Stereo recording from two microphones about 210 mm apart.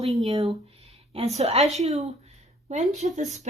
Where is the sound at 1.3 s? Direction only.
30° right (ahead or behind).